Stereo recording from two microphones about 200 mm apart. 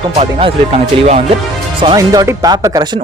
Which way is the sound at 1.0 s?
30° right (ahead or behind).